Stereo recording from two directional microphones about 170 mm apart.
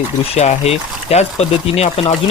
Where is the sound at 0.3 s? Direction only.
40° left (ahead or behind).